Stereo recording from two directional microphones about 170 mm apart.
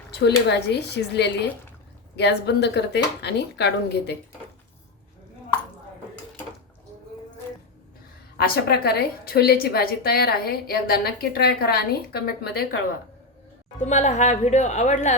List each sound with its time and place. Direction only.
0.1 s speech: 80° left
8.4 s a woman's voice: 65° left (ahead or behind)
13.7 s speech: 45° left (ahead or behind)